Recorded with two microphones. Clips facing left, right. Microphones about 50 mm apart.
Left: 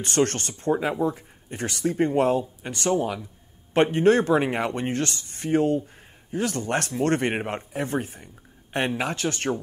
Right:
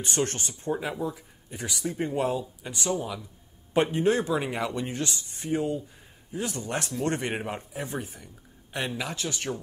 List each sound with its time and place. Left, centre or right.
0.0 s speech: left